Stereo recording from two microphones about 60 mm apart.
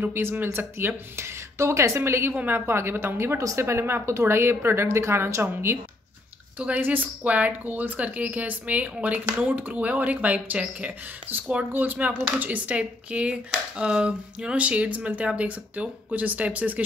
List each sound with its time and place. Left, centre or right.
0.0 s speech: right
2.3 s speech: right
2.6 s speech: right
6.8 s speech: right